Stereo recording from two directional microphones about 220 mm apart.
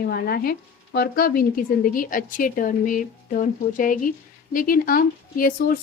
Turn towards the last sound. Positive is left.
turn(degrees=40)  # may be behind; listen again after turning